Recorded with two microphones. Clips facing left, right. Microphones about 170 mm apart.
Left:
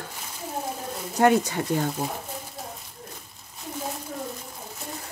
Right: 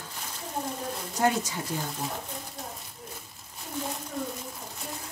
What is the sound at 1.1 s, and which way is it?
Speech, 60° left (ahead or behind).